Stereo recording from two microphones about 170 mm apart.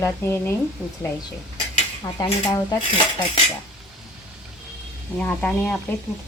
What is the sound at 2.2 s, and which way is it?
Cutlery, 25° left (ahead or behind).